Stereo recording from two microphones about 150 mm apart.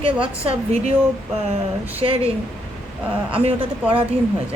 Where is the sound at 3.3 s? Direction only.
40° right (ahead or behind).